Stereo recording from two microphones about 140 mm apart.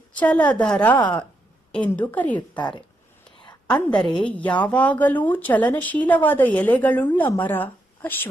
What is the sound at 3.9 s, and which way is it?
Speech, 35° left (ahead or behind).